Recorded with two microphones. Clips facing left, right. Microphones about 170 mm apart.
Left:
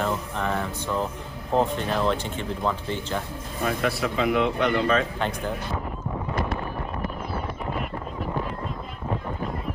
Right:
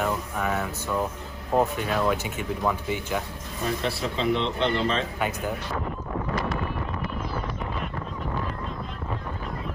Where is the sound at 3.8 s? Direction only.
30° right (ahead or behind).